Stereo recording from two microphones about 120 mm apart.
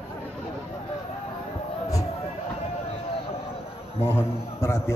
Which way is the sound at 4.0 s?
20° left (ahead or behind).